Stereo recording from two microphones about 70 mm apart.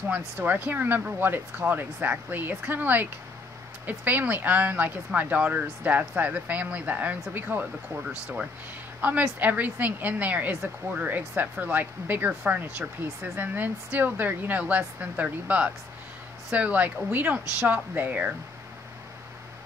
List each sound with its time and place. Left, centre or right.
0.1 s speech: right
9.0 s speech: right